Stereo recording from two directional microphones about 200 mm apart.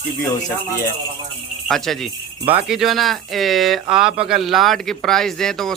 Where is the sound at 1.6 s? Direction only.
Centre (ahead or behind).